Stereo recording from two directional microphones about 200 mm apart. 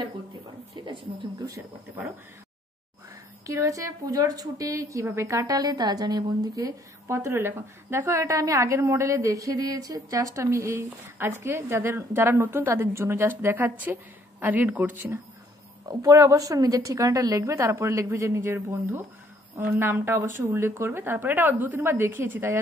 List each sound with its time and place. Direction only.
0.8 s speech: 25° right (ahead or behind)
3.4 s a woman's voice: 15° right (ahead or behind)